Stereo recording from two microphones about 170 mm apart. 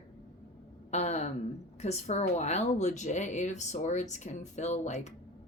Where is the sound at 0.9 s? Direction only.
40° left (ahead or behind).